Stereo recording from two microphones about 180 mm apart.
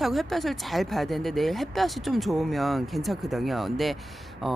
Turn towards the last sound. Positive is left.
turn(degrees=0)  # may be behind; listen again after turning